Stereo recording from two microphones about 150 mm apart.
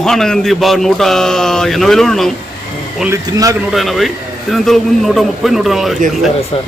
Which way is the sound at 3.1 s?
20° right (ahead or behind).